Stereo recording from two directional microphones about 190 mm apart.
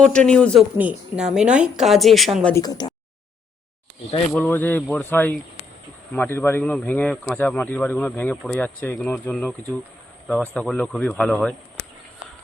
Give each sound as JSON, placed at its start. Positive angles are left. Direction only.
{"t": 0.0, "sound": "a woman's voice", "side_deg": 5}
{"t": 0.8, "sound": "a woman's voice", "side_deg": -5}
{"t": 2.6, "sound": "speech", "side_deg": 20}
{"t": 4.4, "sound": "a woman's voice", "side_deg": 10}